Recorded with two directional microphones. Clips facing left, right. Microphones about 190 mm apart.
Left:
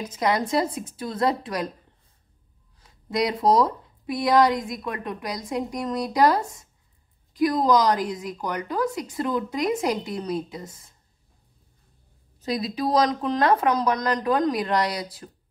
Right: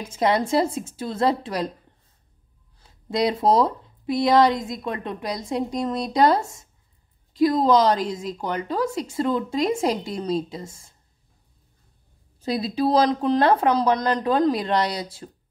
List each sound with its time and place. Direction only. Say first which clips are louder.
0.1 s speech: right 3 dB; 25° right (ahead or behind)
2.8 s speech: right 2 dB; 25° right (ahead or behind)
12.4 s speech: right 3 dB; 30° right (ahead or behind)